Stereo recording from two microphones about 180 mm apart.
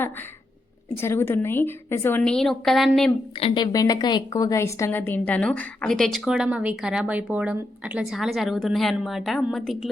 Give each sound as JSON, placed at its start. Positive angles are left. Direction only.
{"t": 1.0, "sound": "a woman's voice", "side_deg": 15}
{"t": 3.4, "sound": "a woman's voice", "side_deg": 25}